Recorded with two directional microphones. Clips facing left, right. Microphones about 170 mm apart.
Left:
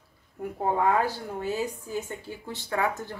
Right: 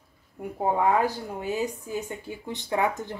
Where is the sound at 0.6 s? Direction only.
15° right (ahead or behind).